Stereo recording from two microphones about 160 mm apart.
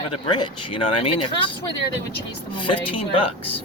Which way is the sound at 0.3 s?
30° left (ahead or behind).